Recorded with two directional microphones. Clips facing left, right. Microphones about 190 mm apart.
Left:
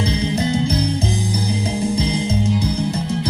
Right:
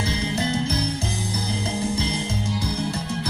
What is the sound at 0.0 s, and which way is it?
Music, 20° left (ahead or behind).